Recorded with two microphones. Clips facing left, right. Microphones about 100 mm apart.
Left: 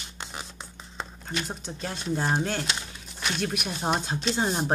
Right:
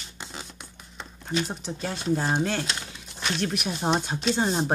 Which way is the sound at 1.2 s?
Centre (ahead or behind).